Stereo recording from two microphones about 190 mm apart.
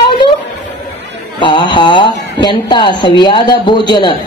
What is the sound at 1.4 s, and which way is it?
Speech, 25° left (ahead or behind).